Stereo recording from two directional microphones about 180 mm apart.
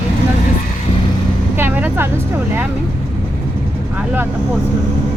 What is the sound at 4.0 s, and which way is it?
Speech, 10° right (ahead or behind).